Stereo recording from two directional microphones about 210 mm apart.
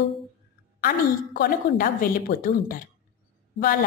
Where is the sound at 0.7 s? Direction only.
45° left (ahead or behind).